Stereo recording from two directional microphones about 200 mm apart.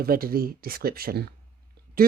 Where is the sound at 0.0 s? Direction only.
45° right (ahead or behind).